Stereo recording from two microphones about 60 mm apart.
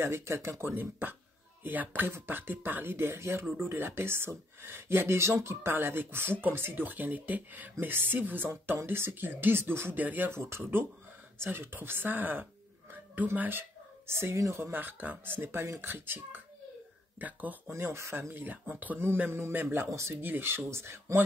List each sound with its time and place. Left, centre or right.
0.0 s speech: right
9.9 s speech: right
10.3 s a woman's voice: right
14.7 s speech: right
17.6 s speech: right
18.3 s speech: right
19.3 s speech: right
19.9 s speech: right
20.2 s speech: right